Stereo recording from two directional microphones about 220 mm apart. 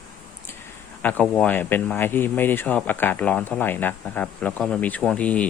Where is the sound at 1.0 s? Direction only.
5° left (ahead or behind).